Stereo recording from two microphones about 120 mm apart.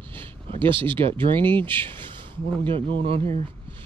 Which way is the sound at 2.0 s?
45° right (ahead or behind).